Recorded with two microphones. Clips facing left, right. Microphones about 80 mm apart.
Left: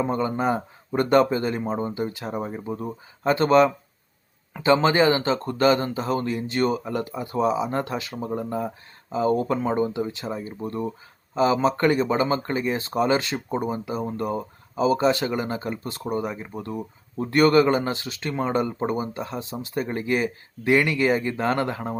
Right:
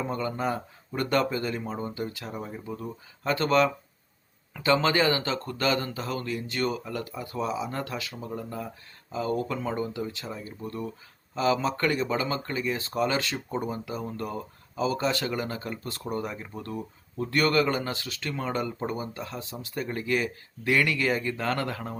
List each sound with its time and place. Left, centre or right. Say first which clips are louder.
0.0 s speech: left 6 dB; left
17.2 s speech: left 7 dB; left